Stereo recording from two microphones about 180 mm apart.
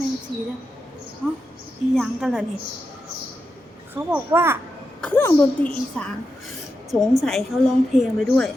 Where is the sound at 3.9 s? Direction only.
10° right (ahead or behind).